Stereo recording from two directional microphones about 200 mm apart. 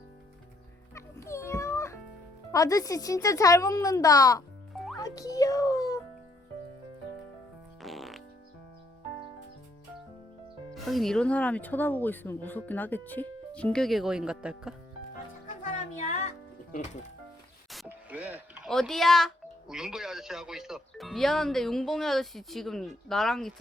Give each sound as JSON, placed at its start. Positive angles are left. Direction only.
{"t": 0.9, "sound": "music", "side_deg": 15}
{"t": 2.5, "sound": "speech", "side_deg": 15}
{"t": 4.7, "sound": "music", "side_deg": 0}
{"t": 4.9, "sound": "music", "side_deg": 15}
{"t": 7.8, "sound": "fart", "side_deg": 0}
{"t": 10.8, "sound": "speech", "side_deg": 0}
{"t": 16.0, "sound": "music", "side_deg": 35}
{"t": 17.7, "sound": "doorbell", "side_deg": -5}
{"t": 18.7, "sound": "speech", "side_deg": 0}